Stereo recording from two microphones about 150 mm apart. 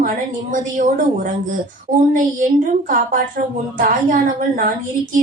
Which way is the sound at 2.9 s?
65° right (ahead or behind).